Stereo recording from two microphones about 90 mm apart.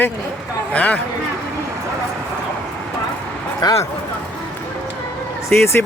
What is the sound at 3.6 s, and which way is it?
Speech, 50° left (ahead or behind).